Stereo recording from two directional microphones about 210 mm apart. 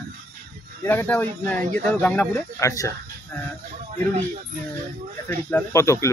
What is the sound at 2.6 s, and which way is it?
Speech, 15° left (ahead or behind).